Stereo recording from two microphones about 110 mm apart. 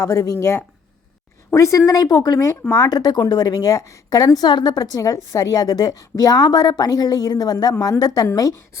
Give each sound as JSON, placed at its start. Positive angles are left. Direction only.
{"t": 0.0, "sound": "a woman's voice", "side_deg": 25}